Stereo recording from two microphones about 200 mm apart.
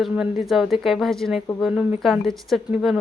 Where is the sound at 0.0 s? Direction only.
Centre (ahead or behind).